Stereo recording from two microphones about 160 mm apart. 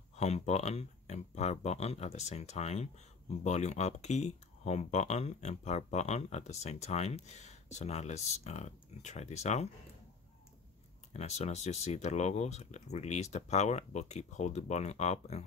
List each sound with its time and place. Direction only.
0.1 s speech: 45° left (ahead or behind)
11.1 s speech: 45° left (ahead or behind)